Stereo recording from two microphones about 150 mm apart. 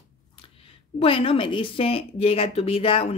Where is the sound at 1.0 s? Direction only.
35° left (ahead or behind).